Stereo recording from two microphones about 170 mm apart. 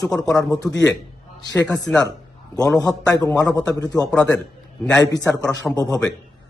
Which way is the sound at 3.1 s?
15° left (ahead or behind).